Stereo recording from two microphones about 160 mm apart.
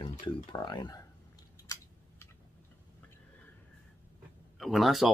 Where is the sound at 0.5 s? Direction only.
30° left (ahead or behind).